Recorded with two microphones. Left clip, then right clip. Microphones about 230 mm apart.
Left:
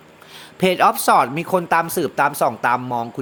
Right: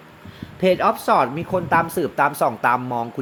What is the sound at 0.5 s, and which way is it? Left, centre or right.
Speech, left.